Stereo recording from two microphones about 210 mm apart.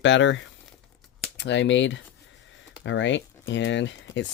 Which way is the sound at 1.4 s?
55° left (ahead or behind).